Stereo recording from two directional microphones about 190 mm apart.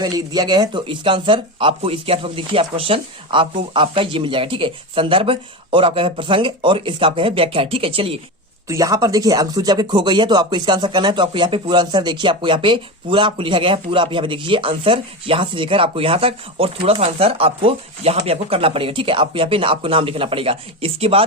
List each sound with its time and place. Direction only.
0.0 s speech: 20° right (ahead or behind)
8.6 s speech: 15° right (ahead or behind)